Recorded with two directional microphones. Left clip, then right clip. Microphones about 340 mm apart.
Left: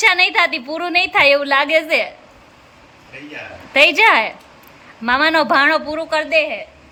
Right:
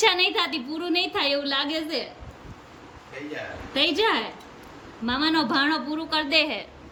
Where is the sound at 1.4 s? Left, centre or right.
Centre.